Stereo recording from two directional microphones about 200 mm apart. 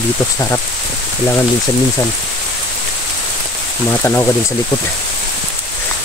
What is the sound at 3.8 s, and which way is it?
Speech, 10° left (ahead or behind).